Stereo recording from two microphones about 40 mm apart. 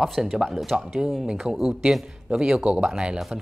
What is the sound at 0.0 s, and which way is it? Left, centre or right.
Speech, centre.